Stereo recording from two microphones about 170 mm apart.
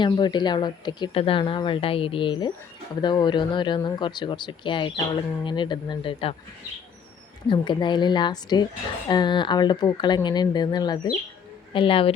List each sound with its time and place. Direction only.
0.0 s speech: 25° left (ahead or behind)
7.4 s speech: 25° left (ahead or behind)